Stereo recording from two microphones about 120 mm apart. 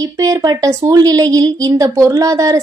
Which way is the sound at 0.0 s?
30° right (ahead or behind).